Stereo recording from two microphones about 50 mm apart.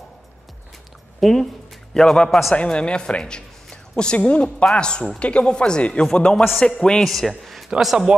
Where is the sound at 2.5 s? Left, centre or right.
Left.